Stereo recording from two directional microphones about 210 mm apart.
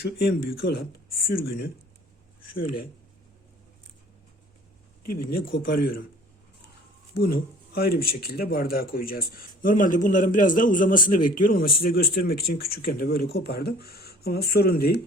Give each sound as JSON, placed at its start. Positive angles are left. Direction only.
{"t": 0.0, "sound": "speech", "side_deg": 50}
{"t": 5.0, "sound": "speech", "side_deg": 45}
{"t": 7.1, "sound": "a man's voice", "side_deg": 45}